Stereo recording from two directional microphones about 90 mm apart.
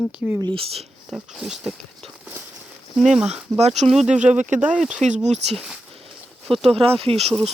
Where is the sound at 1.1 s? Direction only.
Centre (ahead or behind).